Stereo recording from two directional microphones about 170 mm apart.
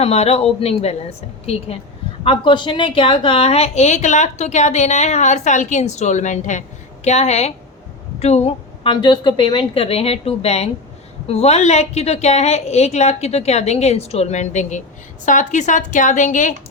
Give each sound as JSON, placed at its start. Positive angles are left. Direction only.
{"t": 0.0, "sound": "a woman's voice", "side_deg": 35}